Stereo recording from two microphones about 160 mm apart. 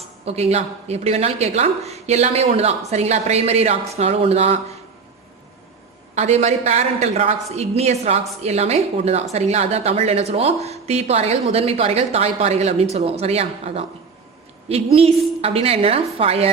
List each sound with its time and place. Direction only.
0.3 s speech: 40° right (ahead or behind)
6.1 s a woman's voice: 45° right (ahead or behind)
14.9 s speech: 40° right (ahead or behind)